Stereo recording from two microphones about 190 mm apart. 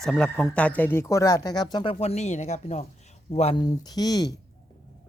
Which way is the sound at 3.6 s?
20° left (ahead or behind).